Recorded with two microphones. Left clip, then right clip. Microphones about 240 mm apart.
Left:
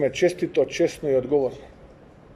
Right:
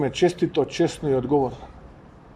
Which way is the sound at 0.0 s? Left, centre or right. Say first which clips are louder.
Even; centre.